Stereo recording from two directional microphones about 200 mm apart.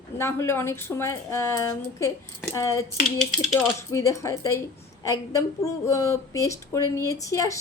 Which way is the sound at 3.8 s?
15° left (ahead or behind).